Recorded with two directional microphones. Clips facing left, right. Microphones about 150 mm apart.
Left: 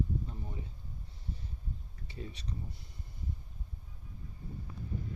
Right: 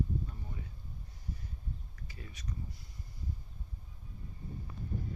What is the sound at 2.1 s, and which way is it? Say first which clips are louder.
Speech: left 5 dB; 25° left (ahead or behind).